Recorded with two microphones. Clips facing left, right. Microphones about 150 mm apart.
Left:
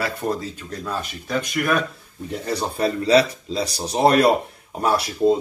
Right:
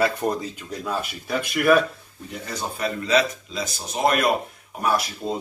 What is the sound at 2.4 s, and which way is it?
Speech, 35° left (ahead or behind).